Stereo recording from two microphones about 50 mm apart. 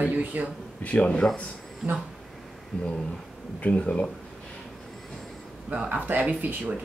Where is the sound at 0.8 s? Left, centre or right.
Left.